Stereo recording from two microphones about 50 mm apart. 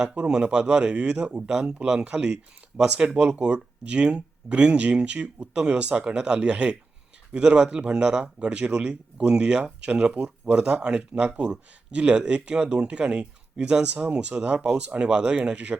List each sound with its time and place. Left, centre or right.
0.0 s speech: centre